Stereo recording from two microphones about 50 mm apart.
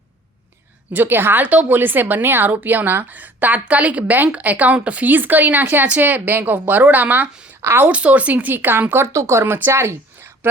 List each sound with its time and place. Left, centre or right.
0.9 s a woman's voice: right
7.6 s a woman's voice: right
7.9 s a woman's voice: right
9.0 s speech: right
9.4 s speech: right